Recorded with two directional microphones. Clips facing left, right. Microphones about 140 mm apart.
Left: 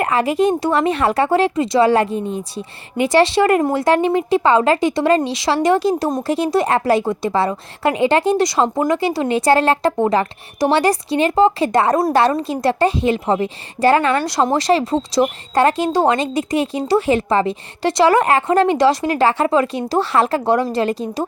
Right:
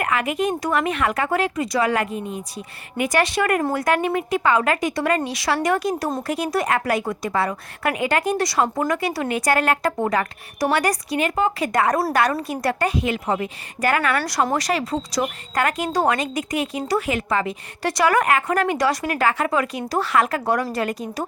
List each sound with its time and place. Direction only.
0.0 s speech: 30° left (ahead or behind)